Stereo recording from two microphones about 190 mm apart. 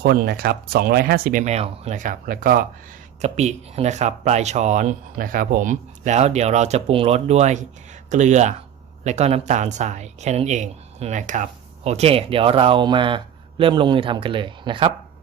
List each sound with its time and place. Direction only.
0.0 s speech: 55° right (ahead or behind)
3.2 s speech: 35° right (ahead or behind)